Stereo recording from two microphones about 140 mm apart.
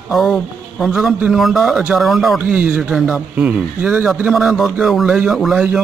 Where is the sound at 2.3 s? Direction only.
10° right (ahead or behind).